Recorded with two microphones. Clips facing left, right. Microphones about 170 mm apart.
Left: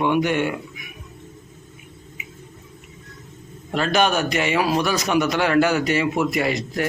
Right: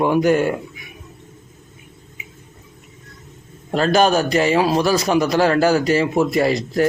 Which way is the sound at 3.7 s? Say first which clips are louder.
Right 4 dB; 35° right (ahead or behind).